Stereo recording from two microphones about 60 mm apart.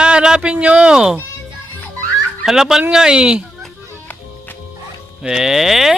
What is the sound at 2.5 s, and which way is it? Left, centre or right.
Speech, centre.